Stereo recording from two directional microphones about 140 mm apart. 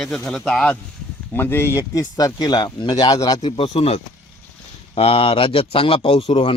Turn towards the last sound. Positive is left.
turn(degrees=40)  # may be behind; listen again after turning